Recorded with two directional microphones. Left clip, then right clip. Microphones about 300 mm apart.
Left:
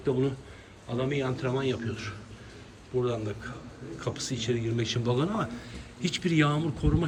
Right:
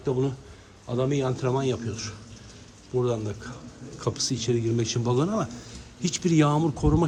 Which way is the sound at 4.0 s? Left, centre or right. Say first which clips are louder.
Right 5 dB; centre.